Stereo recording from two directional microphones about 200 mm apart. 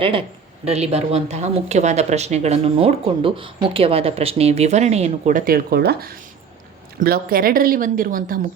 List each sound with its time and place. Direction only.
0.0 s a woman's voice: 25° right (ahead or behind); by 8.4 s 45° right (ahead or behind)